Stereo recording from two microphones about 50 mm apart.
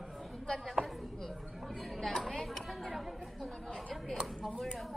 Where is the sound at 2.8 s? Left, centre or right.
Centre.